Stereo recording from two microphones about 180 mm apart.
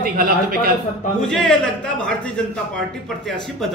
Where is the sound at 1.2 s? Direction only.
5° left (ahead or behind).